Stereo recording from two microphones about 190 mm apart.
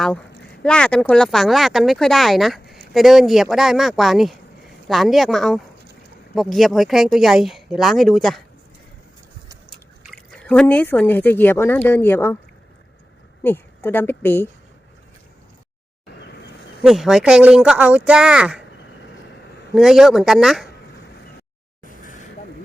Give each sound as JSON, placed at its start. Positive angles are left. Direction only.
{"t": 0.6, "sound": "speech", "side_deg": 5}
{"t": 9.6, "sound": "speech", "side_deg": 0}
{"t": 13.4, "sound": "a woman's voice", "side_deg": 10}
{"t": 16.8, "sound": "speech", "side_deg": 0}
{"t": 19.7, "sound": "speech", "side_deg": 0}
{"t": 22.0, "sound": "a sound", "side_deg": 45}